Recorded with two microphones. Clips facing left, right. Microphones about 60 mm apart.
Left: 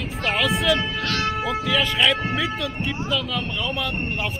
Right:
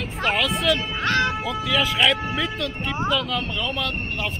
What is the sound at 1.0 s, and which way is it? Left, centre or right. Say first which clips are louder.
Speech: right 3 dB; right.